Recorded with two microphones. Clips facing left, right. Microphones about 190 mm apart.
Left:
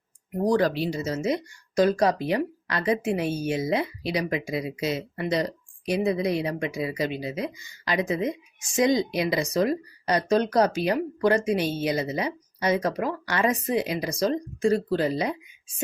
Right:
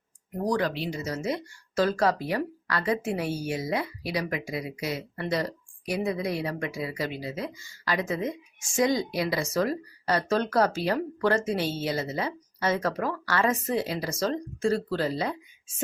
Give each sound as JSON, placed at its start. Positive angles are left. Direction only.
{"t": 0.6, "sound": "speech", "side_deg": 40}